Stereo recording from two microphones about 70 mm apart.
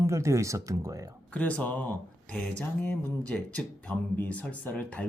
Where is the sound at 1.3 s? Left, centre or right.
Left.